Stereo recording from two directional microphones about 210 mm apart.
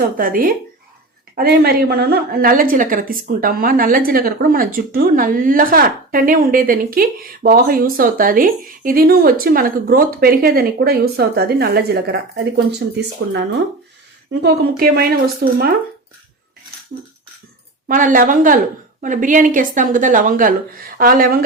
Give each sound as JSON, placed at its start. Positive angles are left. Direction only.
{"t": 0.0, "sound": "a woman's voice", "side_deg": -40}
{"t": 17.8, "sound": "a woman's voice", "side_deg": -40}